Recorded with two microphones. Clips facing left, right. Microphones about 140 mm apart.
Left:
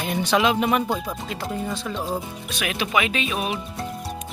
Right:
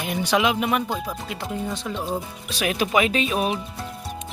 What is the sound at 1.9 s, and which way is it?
Speech, 5° left (ahead or behind).